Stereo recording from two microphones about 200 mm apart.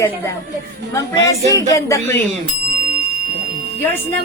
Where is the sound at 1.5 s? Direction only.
15° left (ahead or behind).